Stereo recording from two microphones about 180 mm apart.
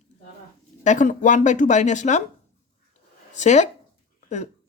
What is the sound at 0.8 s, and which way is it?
Speech, 45° left (ahead or behind).